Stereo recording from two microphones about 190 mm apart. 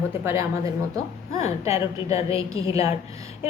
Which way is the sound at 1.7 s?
30° left (ahead or behind).